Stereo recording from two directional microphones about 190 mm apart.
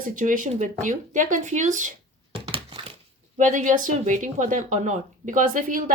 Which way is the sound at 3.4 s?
40° right (ahead or behind).